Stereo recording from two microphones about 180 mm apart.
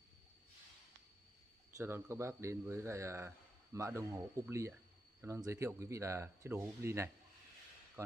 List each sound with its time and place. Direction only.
1.8 s a man's voice: 15° right (ahead or behind)